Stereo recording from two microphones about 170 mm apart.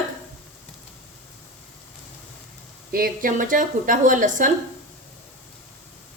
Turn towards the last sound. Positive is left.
turn(degrees=-50)  # may be behind; listen again after turning